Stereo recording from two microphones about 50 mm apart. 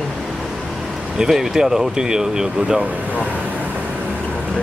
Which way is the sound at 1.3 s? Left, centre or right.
Centre.